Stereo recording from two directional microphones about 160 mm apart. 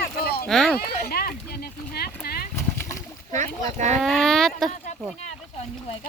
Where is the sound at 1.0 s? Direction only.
75° left (ahead or behind).